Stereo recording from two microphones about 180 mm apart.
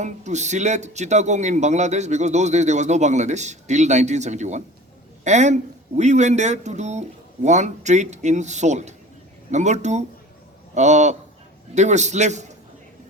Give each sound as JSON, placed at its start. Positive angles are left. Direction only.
{"t": 0.0, "sound": "a man's voice", "side_deg": -40}